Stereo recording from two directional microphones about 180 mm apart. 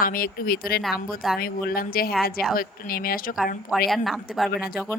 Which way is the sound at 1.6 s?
55° left (ahead or behind).